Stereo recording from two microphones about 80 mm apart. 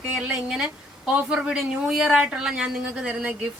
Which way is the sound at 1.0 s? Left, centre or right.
Centre.